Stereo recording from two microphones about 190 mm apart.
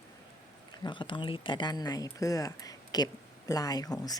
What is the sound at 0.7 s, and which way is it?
Speech, 25° left (ahead or behind).